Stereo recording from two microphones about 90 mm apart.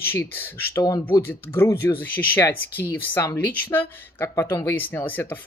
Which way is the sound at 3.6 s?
20° left (ahead or behind).